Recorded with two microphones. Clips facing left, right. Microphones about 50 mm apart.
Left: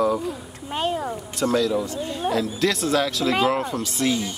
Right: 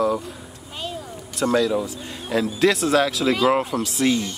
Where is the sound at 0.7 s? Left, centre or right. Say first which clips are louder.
Left 8 dB; left.